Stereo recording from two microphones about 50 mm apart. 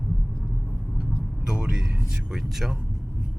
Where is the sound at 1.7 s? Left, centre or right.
Centre.